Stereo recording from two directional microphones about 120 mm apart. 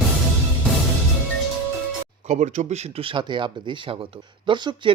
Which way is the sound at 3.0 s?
40° right (ahead or behind).